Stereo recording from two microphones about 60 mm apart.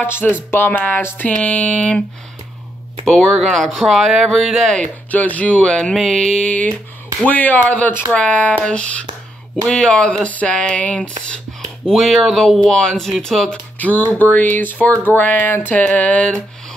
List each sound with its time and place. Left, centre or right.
0.0 s speech: left
1.2 s music: left
3.1 s speech: centre
4.7 s music: left
5.9 s speech: centre
6.2 s music: centre
9.7 s speech: centre
11.9 s speech: centre
13.7 s speech: left
15.0 s music: left